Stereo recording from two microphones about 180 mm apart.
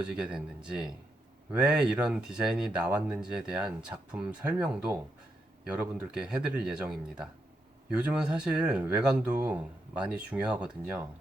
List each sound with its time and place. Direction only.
0.0 s speech: 5° right (ahead or behind)